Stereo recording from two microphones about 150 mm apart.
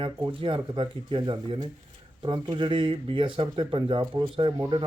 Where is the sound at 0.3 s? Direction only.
35° right (ahead or behind).